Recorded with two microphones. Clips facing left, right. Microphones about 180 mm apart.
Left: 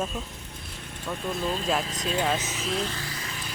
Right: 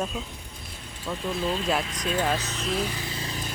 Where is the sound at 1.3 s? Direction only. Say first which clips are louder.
Right 2 dB; 45° left (ahead or behind).